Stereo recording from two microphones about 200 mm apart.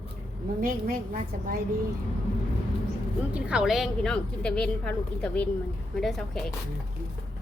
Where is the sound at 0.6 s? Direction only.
45° right (ahead or behind).